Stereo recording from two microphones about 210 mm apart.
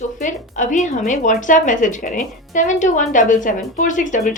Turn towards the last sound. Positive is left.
turn(degrees=35)  # may be behind; listen again after turning